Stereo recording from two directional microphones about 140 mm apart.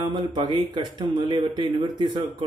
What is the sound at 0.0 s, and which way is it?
A man's voice, 35° right (ahead or behind).